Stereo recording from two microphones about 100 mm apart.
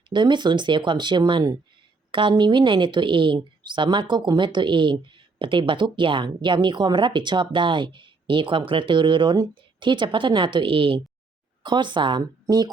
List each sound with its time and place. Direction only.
0.1 s a woman's voice: 50° right (ahead or behind)